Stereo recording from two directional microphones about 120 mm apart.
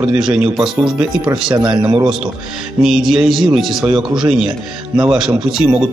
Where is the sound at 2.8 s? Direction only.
5° right (ahead or behind).